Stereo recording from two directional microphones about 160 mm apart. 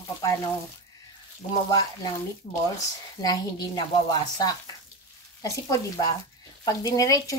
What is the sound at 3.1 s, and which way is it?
Speech, 25° left (ahead or behind).